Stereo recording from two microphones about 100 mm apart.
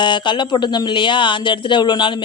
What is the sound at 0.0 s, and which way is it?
Speech, 50° left (ahead or behind).